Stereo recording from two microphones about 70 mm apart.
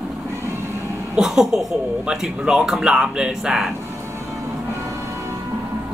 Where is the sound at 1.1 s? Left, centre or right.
Centre.